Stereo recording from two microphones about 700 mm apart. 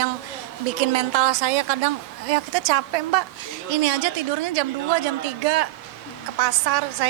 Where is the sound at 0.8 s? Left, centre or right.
Right.